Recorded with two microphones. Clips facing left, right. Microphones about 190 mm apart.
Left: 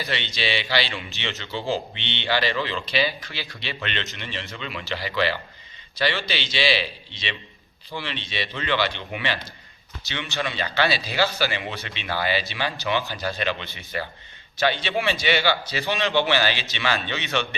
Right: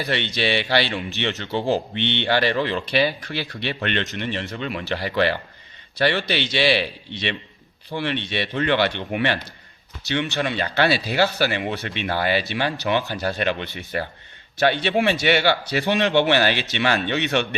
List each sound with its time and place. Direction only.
0.0 s a man's voice: 55° right (ahead or behind)